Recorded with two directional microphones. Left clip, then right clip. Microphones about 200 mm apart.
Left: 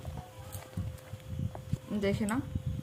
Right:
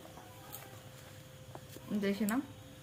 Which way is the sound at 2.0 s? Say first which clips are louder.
Left 4 dB; 15° left (ahead or behind).